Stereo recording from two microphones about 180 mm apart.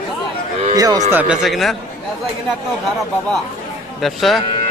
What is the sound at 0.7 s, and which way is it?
Speech, 20° right (ahead or behind).